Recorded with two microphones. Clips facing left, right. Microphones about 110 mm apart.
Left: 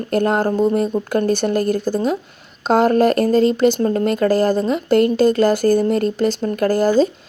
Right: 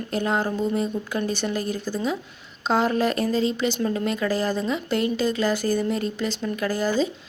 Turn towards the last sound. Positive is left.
turn(degrees=45)  # may be behind; listen again after turning